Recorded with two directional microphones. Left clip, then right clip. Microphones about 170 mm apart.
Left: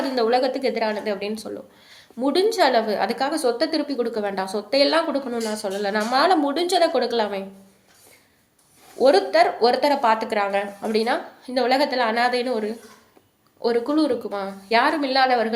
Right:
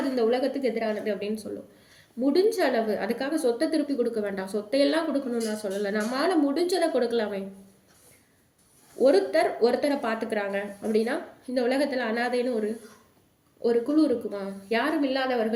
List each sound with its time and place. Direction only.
0.2 s a woman's voice: 15° right (ahead or behind)
2.5 s a woman's voice: 15° right (ahead or behind)
9.0 s a woman's voice: 15° right (ahead or behind)